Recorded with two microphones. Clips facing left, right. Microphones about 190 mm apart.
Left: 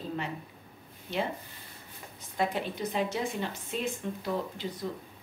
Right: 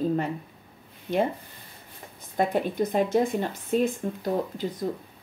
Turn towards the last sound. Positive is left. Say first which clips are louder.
# right 6 dB
turn(degrees=-45)  # may be behind; listen again after turning